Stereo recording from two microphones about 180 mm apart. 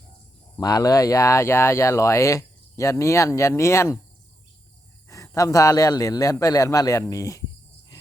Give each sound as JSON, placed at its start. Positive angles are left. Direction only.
{"t": 0.6, "sound": "speech", "side_deg": 20}
{"t": 5.0, "sound": "a man's voice", "side_deg": 15}